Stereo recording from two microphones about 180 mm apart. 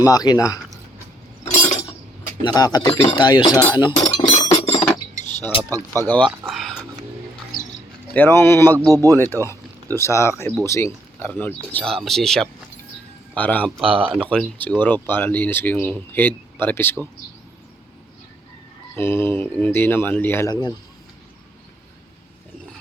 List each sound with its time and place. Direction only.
0.0 s speech: 20° left (ahead or behind)
2.4 s speech: 20° left (ahead or behind)
3.9 s chink: 40° left (ahead or behind)
5.6 s speech: 15° right (ahead or behind)
6.5 s music: centre (ahead or behind)
8.1 s speech: 10° left (ahead or behind)
8.9 s speech: 20° right (ahead or behind)
9.1 s speech: 10° left (ahead or behind)
13.8 s speech: 30° right (ahead or behind)
14.1 s speech: 5° left (ahead or behind)
18.9 s speech: 15° left (ahead or behind)